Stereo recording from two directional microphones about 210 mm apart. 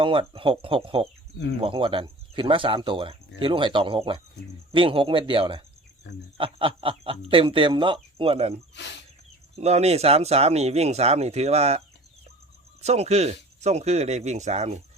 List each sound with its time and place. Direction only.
0.0 s speech: 25° right (ahead or behind)
8.7 s speech: 55° left (ahead or behind)
9.6 s speech: 30° right (ahead or behind)
12.8 s speech: 30° right (ahead or behind)